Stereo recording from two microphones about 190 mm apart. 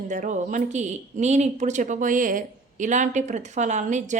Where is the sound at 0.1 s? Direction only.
40° right (ahead or behind).